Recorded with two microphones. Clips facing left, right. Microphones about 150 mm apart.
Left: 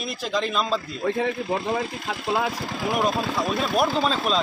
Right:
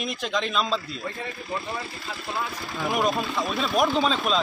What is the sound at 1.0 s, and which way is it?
A man's voice, 90° left.